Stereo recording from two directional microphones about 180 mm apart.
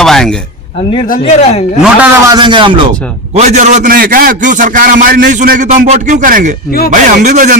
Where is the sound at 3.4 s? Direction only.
40° right (ahead or behind).